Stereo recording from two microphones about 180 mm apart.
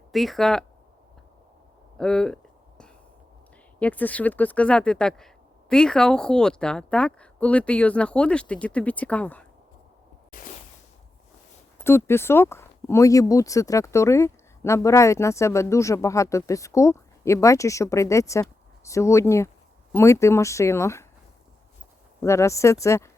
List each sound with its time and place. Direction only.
0.1 s speech: centre (ahead or behind)
2.0 s a sound: 5° left (ahead or behind)
3.8 s speech: 10° left (ahead or behind)
11.8 s speech: 15° left (ahead or behind)
22.2 s speech: 15° left (ahead or behind)